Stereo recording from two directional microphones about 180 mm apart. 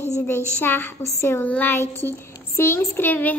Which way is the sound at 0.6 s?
10° left (ahead or behind).